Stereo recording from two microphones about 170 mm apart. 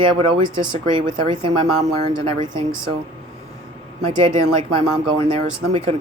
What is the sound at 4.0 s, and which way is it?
Speech, 40° right (ahead or behind).